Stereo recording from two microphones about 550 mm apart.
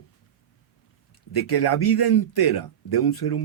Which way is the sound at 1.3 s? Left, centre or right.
Left.